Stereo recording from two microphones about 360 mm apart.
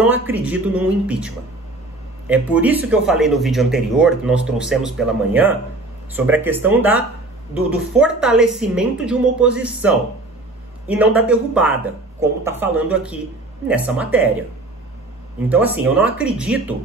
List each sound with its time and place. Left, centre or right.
0.0 s a woman's voice: centre
15.5 s a woman's voice: centre